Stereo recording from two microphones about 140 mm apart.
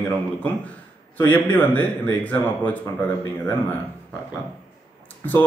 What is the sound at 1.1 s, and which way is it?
Speech, 10° left (ahead or behind).